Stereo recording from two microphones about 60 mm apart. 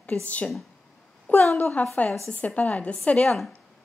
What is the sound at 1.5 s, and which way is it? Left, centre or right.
A woman's voice, left.